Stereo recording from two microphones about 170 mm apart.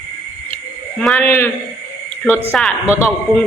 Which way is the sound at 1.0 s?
Centre (ahead or behind).